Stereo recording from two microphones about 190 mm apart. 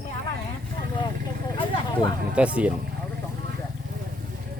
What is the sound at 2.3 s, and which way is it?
Speech, 5° right (ahead or behind).